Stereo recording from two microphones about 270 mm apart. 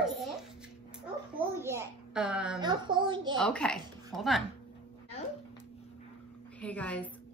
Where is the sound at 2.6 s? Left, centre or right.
Centre.